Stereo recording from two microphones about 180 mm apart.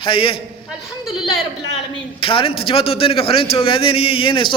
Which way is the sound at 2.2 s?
30° left (ahead or behind).